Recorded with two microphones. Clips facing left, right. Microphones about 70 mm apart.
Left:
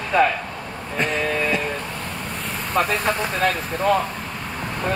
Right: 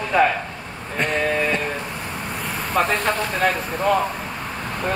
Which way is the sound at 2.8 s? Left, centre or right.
Centre.